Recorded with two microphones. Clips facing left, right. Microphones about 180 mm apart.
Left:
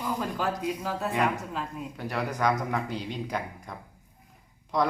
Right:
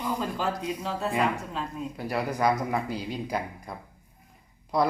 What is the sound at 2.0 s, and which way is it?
Speech, 10° right (ahead or behind).